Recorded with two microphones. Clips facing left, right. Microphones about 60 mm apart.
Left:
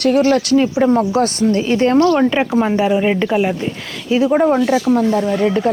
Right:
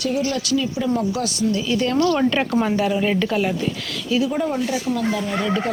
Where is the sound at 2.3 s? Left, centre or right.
Centre; by 5.3 s left.